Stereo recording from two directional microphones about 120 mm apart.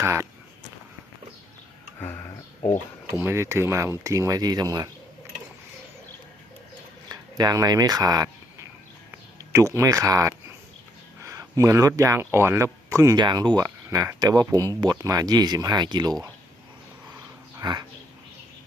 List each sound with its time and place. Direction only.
0.0 s speech: 25° right (ahead or behind)
2.0 s a sound: 20° left (ahead or behind)
3.2 s speech: 20° right (ahead or behind)
7.1 s speech: 35° right (ahead or behind)
9.5 s speech: 25° right (ahead or behind)
17.6 s speech: 35° right (ahead or behind)